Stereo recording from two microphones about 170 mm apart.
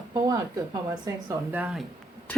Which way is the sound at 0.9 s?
25° right (ahead or behind).